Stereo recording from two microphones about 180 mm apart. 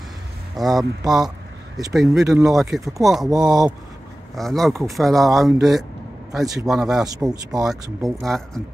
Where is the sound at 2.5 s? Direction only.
Centre (ahead or behind).